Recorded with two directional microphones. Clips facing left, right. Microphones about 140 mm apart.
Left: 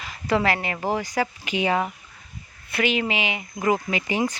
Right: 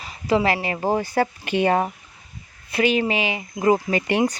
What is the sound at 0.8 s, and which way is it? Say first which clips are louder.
Speech: right 4 dB; 20° right (ahead or behind).